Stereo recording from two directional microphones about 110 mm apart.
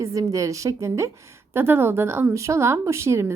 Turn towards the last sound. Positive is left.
turn(degrees=-25)  # may be behind; listen again after turning